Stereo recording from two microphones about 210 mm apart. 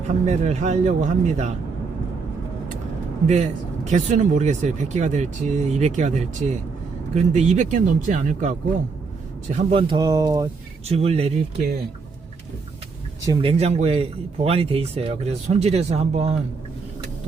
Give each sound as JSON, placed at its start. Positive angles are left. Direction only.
{"t": 0.3, "sound": "a man's voice", "side_deg": -30}
{"t": 3.2, "sound": "a man's voice", "side_deg": -30}
{"t": 10.8, "sound": "speech", "side_deg": -30}
{"t": 13.2, "sound": "speech", "side_deg": -20}